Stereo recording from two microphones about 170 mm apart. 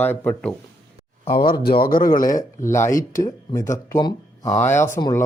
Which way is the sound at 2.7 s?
15° left (ahead or behind).